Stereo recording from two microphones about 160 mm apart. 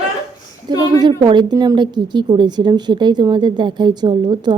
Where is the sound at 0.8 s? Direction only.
25° right (ahead or behind).